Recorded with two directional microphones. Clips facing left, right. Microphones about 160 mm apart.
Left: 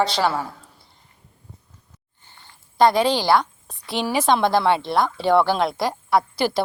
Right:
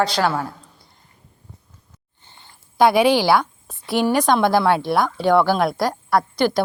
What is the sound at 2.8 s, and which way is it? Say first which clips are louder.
A woman's voice: right 2 dB; 5° right (ahead or behind).